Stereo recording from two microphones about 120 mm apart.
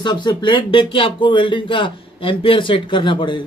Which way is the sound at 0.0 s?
40° left (ahead or behind).